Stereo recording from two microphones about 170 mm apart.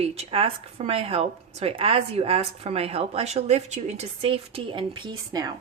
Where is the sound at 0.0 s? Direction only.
35° right (ahead or behind).